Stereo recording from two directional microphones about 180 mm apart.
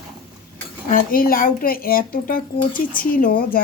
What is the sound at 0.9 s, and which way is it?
Speech, 50° left (ahead or behind).